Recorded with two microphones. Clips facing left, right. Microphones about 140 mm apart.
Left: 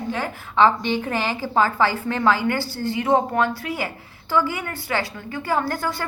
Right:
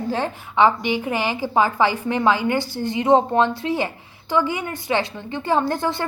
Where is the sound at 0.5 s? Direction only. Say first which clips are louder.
Even; 15° right (ahead or behind).